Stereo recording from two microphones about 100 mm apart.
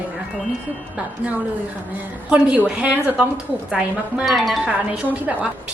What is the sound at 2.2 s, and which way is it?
A woman's voice, 15° right (ahead or behind).